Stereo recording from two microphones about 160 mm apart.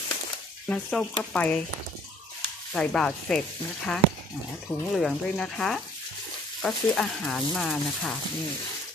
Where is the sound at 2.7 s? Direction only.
5° left (ahead or behind).